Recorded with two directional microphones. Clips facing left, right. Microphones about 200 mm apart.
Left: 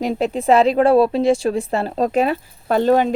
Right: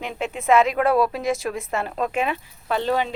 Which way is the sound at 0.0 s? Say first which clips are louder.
Left 8 dB; 35° left (ahead or behind).